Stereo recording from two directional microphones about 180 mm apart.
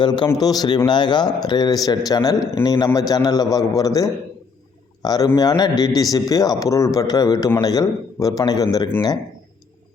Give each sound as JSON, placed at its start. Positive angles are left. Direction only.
{"t": 0.0, "sound": "a man's voice", "side_deg": 25}